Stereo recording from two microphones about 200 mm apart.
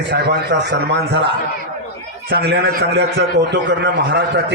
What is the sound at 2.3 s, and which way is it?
A man's voice, 55° right (ahead or behind).